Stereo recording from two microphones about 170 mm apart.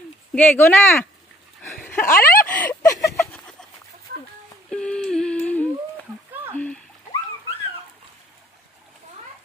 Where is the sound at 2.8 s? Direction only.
20° left (ahead or behind).